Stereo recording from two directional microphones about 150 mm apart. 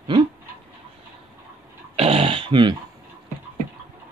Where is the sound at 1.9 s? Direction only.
40° right (ahead or behind).